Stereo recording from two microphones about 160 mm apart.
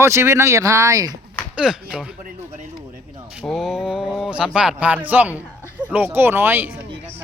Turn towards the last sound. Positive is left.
turn(degrees=-15)  # may be behind; listen again after turning